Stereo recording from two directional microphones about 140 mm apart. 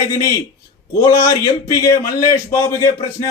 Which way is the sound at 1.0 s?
25° left (ahead or behind).